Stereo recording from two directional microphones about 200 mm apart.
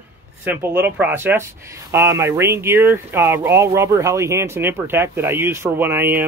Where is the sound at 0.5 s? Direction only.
10° right (ahead or behind).